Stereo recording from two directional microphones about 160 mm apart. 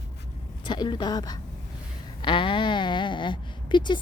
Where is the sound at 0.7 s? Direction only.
30° left (ahead or behind).